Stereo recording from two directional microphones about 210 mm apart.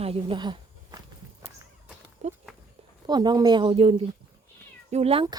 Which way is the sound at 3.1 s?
20° right (ahead or behind).